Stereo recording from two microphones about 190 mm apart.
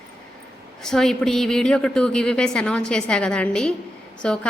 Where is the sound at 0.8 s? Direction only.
5° left (ahead or behind).